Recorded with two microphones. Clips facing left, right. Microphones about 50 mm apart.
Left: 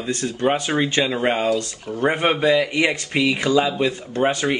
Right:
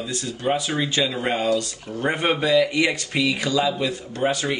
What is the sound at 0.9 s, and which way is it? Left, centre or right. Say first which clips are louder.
Speech: left 3 dB; left.